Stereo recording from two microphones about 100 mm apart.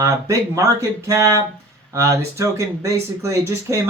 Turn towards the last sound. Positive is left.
turn(degrees=-30)  # may be behind; listen again after turning